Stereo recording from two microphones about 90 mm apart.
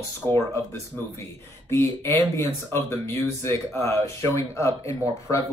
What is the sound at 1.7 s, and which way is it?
Speech, 30° left (ahead or behind).